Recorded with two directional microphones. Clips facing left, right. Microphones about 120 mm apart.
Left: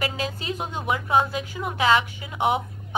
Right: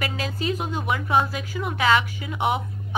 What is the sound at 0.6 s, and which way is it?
Speech, 25° left (ahead or behind).